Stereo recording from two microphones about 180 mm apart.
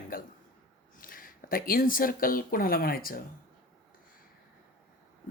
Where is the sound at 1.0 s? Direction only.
50° left (ahead or behind).